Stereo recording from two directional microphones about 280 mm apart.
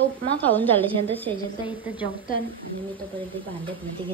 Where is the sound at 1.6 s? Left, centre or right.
Centre.